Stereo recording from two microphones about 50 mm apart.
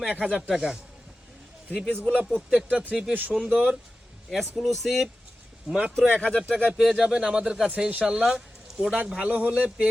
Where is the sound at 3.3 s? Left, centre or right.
Centre.